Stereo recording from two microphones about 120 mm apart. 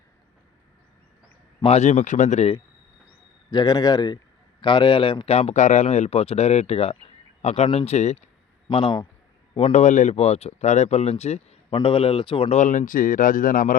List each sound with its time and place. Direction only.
1.6 s speech: 70° left (ahead or behind); by 2.5 s 85° left
3.5 s speech: 35° left (ahead or behind)
5.3 s speech: 60° left (ahead or behind)
8.6 s a man's voice: 45° left (ahead or behind)
9.6 s speech: 65° left (ahead or behind); by 12.5 s 40° left (ahead or behind)
12.5 s speech: 85° left